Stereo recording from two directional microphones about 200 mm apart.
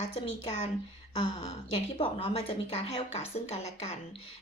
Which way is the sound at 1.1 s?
30° left (ahead or behind).